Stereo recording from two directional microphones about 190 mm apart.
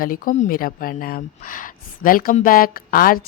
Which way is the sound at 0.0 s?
45° left (ahead or behind).